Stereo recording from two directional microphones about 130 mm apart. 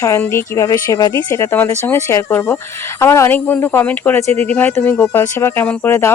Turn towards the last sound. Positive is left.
turn(degrees=20)  # may be behind; listen again after turning